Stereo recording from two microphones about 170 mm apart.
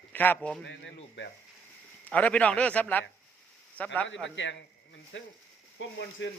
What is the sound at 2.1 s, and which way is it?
A man's voice, 10° left (ahead or behind).